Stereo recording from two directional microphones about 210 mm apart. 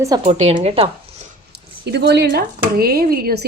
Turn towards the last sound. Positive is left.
turn(degrees=-45)  # may be behind; listen again after turning